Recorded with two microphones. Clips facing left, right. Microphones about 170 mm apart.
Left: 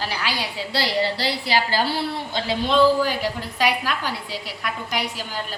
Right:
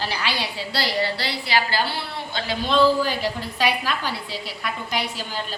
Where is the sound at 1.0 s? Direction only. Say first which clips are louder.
Left 3 dB; 40° left (ahead or behind).